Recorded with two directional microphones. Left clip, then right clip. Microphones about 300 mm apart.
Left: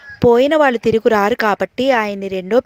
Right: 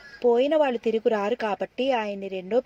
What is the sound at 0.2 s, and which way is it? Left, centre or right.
Speech, left.